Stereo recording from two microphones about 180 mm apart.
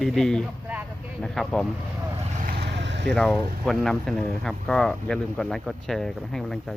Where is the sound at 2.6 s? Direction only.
80° right.